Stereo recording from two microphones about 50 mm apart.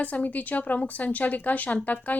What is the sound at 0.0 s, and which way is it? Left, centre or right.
Speech, left.